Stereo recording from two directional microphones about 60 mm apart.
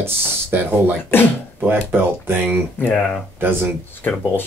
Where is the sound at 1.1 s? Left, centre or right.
Left.